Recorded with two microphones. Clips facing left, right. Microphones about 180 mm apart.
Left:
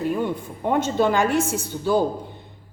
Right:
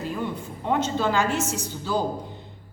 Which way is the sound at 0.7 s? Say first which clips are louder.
Left 4 dB; 55° left (ahead or behind).